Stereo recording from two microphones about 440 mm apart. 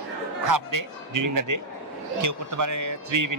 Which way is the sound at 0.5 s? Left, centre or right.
Right.